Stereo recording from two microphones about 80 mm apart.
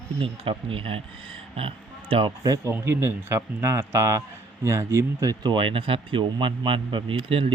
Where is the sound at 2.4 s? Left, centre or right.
Right.